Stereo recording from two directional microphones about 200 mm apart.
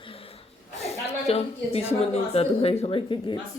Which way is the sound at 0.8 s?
30° left (ahead or behind).